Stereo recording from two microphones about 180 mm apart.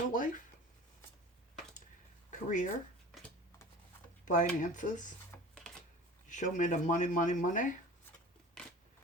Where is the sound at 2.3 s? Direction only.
45° left (ahead or behind).